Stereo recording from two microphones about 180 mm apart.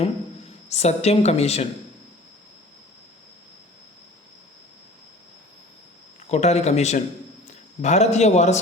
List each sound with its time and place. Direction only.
0.7 s a woman's voice: 35° left (ahead or behind)
6.2 s a woman's voice: 35° left (ahead or behind)